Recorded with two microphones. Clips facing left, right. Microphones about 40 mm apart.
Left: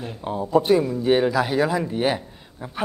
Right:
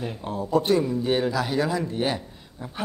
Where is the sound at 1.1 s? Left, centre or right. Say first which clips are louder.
Left 5 dB; centre.